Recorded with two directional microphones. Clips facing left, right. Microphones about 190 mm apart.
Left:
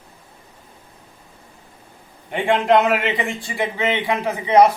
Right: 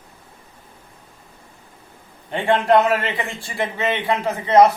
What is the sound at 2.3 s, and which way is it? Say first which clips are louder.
A man's voice: even; 15° left (ahead or behind).